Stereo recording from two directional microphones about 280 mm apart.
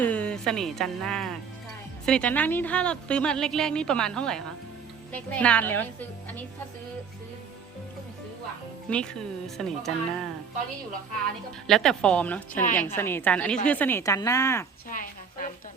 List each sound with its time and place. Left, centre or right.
0.0 s a woman's voice: centre
8.9 s a woman's voice: centre
11.6 s a woman's voice: centre
14.8 s a sound: left